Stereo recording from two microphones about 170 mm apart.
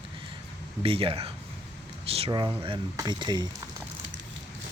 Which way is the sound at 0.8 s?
35° right (ahead or behind).